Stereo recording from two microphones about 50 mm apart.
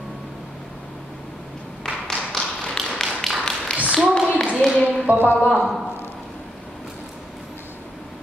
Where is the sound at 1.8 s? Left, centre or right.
Centre.